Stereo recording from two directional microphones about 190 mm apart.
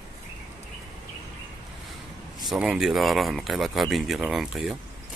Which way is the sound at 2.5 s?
Centre (ahead or behind).